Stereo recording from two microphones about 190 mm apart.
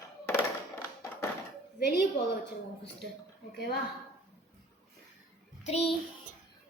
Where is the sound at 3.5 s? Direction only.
55° left (ahead or behind).